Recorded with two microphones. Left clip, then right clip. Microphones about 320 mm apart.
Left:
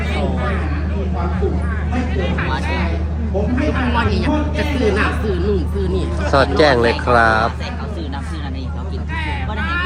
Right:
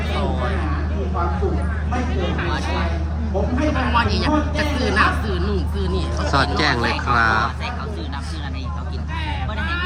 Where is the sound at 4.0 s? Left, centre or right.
Centre.